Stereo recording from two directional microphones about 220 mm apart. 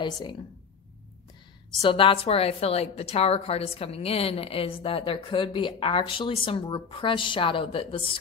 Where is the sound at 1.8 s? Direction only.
25° left (ahead or behind).